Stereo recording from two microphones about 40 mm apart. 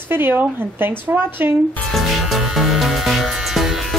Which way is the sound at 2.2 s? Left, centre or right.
Centre.